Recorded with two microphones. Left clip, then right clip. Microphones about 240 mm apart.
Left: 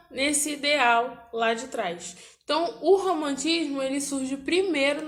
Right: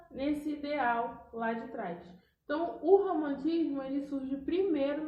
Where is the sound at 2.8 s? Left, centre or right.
Left.